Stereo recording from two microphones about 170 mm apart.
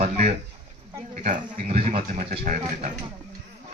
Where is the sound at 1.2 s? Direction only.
35° right (ahead or behind).